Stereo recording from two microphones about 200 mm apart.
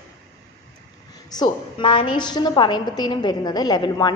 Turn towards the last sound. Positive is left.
turn(degrees=20)  # may be behind; listen again after turning